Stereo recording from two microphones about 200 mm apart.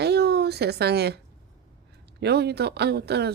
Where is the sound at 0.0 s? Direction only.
55° right (ahead or behind).